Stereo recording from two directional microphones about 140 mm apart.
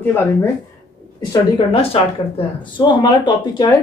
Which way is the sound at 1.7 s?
45° left (ahead or behind).